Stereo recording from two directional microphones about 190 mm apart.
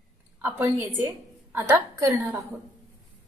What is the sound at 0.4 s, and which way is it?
A woman's voice, 15° right (ahead or behind).